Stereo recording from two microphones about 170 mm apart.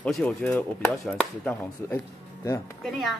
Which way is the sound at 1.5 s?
15° left (ahead or behind).